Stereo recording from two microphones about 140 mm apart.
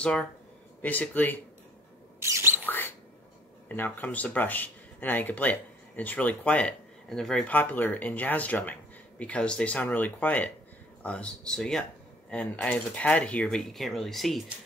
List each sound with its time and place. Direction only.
0.0 s speech: 5° left (ahead or behind)
2.1 s squawk: 20° right (ahead or behind)
3.6 s speech: 15° left (ahead or behind)